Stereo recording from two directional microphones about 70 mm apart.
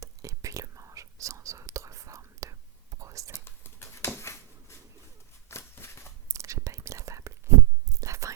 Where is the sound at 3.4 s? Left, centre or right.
Left.